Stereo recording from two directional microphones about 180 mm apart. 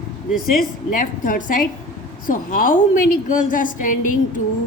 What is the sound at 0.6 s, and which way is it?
A woman's voice, 50° left (ahead or behind).